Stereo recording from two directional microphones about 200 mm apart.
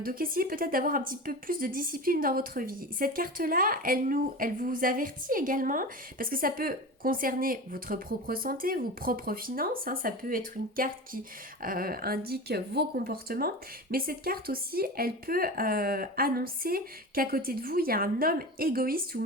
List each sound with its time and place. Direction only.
0.0 s a woman's voice: 45° right (ahead or behind)